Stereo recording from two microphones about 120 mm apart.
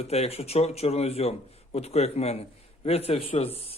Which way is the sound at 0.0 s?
60° left (ahead or behind).